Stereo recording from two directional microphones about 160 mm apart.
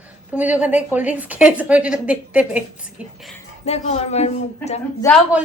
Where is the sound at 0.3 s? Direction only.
10° right (ahead or behind).